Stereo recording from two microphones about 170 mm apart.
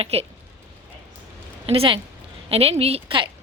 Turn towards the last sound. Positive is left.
turn(degrees=-35)  # may be behind; listen again after turning